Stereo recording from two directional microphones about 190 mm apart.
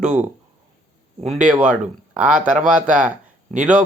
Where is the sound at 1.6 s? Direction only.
5° right (ahead or behind).